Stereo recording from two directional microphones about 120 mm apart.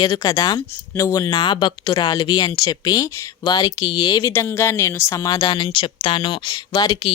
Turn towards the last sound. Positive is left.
turn(degrees=35)  # may be behind; listen again after turning